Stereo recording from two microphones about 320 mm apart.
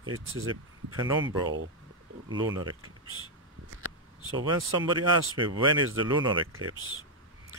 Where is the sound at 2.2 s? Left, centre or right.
Centre.